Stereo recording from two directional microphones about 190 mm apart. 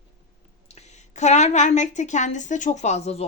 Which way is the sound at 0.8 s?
35° left (ahead or behind).